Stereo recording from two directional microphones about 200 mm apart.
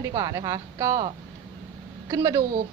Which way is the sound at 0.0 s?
15° right (ahead or behind).